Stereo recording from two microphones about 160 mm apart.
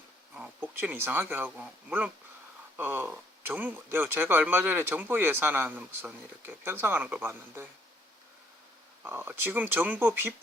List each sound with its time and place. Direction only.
0.3 s speech: 10° right (ahead or behind)
9.0 s speech: 15° right (ahead or behind)